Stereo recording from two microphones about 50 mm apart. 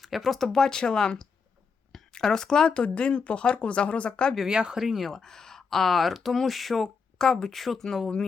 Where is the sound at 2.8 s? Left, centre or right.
Left.